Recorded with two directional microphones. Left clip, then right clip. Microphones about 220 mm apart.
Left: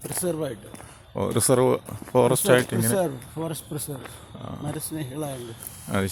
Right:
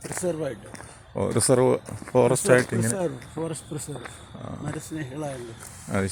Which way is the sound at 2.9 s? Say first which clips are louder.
Left 3 dB; 40° left (ahead or behind).